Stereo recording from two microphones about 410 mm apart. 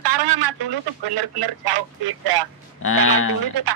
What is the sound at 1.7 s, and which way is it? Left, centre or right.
Speech, right.